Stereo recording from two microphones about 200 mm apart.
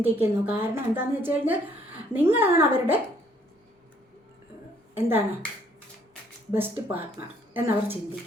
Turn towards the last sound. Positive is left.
turn(degrees=-10)  # may be behind; listen again after turning